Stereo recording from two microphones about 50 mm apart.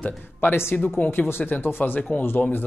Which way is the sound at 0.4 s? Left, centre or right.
Left.